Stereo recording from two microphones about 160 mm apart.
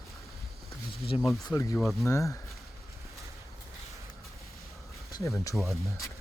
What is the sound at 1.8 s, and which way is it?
Speech, centre (ahead or behind).